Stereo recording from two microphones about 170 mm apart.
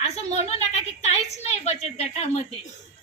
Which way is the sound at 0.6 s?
40° left (ahead or behind).